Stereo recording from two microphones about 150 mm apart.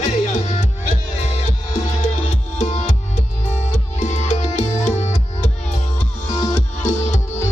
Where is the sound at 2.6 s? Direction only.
45° left (ahead or behind).